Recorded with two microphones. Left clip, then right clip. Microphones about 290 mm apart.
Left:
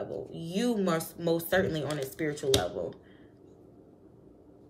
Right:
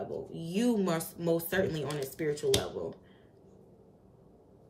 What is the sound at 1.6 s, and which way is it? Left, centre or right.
Speech, centre.